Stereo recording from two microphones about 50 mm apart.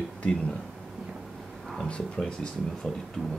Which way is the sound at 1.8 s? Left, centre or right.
Left.